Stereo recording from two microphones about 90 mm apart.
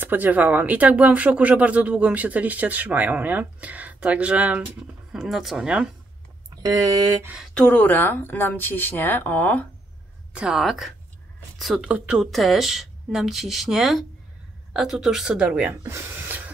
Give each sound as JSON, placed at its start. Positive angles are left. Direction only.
{"t": 0.0, "sound": "speech", "side_deg": -20}
{"t": 5.1, "sound": "speech", "side_deg": -5}
{"t": 6.5, "sound": "speech", "side_deg": -40}
{"t": 7.5, "sound": "a woman's voice", "side_deg": 15}
{"t": 10.3, "sound": "speech", "side_deg": -10}
{"t": 15.7, "sound": "speech", "side_deg": -30}